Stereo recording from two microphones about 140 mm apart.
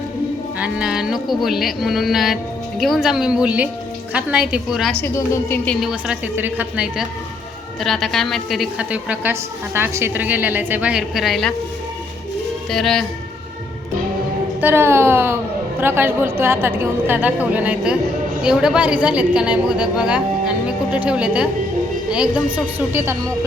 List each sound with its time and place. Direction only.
0.6 s a woman's voice: 5° right (ahead or behind)
4.9 s a woman's voice: 20° left (ahead or behind)
5.6 s a woman's voice: 5° right (ahead or behind)
8.9 s a woman's voice: 10° right (ahead or behind)
12.7 s speech: 5° left (ahead or behind)
14.6 s a woman's voice: 15° right (ahead or behind)